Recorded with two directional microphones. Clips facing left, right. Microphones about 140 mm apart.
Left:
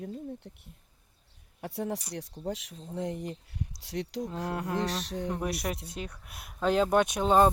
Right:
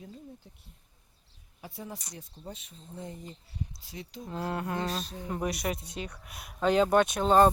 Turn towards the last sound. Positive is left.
turn(degrees=5)  # may be behind; listen again after turning